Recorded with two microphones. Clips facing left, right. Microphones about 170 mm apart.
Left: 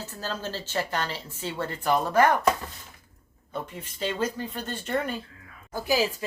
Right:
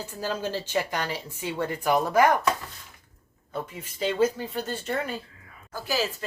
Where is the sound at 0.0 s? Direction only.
15° right (ahead or behind).